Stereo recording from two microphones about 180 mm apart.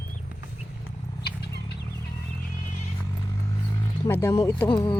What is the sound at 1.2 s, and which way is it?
Chicken, 60° left (ahead or behind).